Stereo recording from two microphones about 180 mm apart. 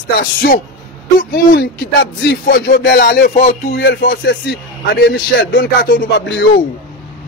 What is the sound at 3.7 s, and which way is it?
A man's voice, 75° left (ahead or behind).